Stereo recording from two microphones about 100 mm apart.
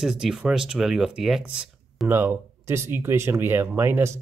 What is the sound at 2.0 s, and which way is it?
Speech, 25° right (ahead or behind).